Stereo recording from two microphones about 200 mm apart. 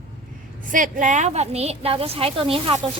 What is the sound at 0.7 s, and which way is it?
A woman's voice, 40° right (ahead or behind).